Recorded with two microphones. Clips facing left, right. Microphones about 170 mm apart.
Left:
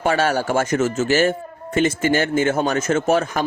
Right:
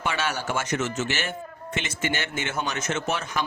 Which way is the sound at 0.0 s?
45° left (ahead or behind).